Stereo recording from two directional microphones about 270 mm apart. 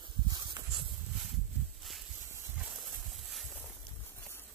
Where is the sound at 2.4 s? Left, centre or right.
Centre.